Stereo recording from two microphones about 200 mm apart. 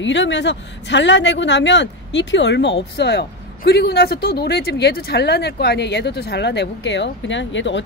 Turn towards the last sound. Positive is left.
turn(degrees=65)  # may be behind; listen again after turning